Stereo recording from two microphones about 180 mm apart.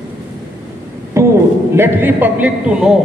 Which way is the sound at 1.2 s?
15° right (ahead or behind).